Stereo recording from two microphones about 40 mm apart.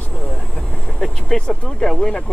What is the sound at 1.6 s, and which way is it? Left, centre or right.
Speech, centre.